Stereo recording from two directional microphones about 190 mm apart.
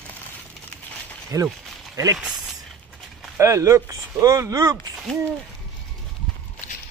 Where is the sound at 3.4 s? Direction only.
15° right (ahead or behind).